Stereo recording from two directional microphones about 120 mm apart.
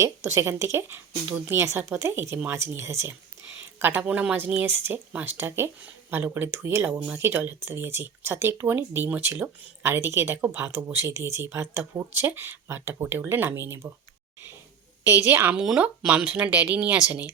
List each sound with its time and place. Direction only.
0.0 s speech: 25° right (ahead or behind)
15.3 s speech: 15° right (ahead or behind)